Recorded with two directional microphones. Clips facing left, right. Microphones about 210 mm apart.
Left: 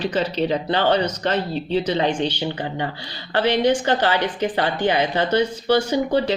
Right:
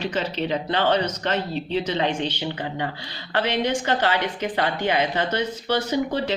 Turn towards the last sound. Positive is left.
turn(degrees=30)  # may be behind; listen again after turning